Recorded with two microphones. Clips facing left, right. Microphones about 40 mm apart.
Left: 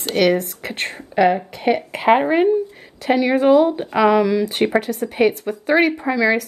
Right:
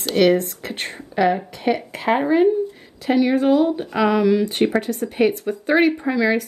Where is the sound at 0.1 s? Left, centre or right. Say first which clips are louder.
Right 1 dB; centre.